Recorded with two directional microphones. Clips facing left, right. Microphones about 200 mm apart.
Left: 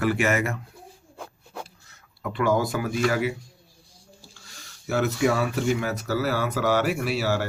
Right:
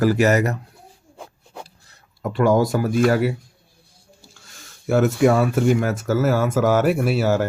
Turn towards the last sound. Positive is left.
turn(degrees=-45)  # may be behind; listen again after turning